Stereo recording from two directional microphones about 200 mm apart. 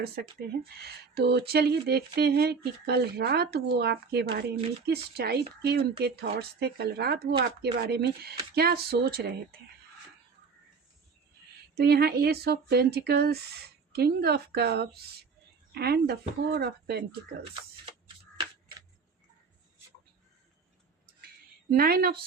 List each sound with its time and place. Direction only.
0.0 s speech: 50° right (ahead or behind)
11.7 s speech: 50° right (ahead or behind)
21.7 s speech: 50° right (ahead or behind)